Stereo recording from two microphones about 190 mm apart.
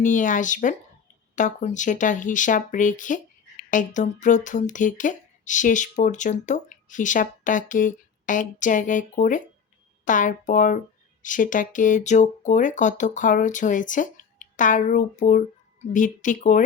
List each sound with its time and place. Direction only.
0.0 s speech: 40° left (ahead or behind)